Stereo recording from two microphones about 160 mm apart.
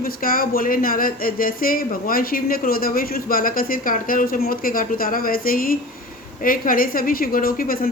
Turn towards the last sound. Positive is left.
turn(degrees=65)  # may be behind; listen again after turning